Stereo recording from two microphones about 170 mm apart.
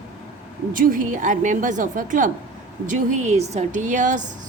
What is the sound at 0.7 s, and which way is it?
A woman's voice, 50° right (ahead or behind).